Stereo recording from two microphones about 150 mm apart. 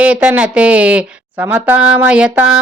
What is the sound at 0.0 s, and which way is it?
A woman's voice, 10° right (ahead or behind).